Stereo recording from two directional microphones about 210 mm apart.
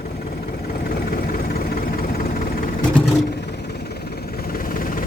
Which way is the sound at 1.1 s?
45° left (ahead or behind).